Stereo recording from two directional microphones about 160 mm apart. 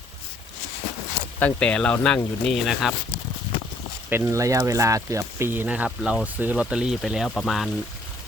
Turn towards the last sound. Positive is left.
turn(degrees=0)  # may be behind; listen again after turning